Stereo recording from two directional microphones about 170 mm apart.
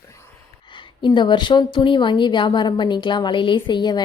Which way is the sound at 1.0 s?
25° left (ahead or behind).